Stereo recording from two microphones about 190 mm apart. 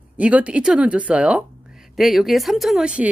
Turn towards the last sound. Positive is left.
turn(degrees=-5)  # may be behind; listen again after turning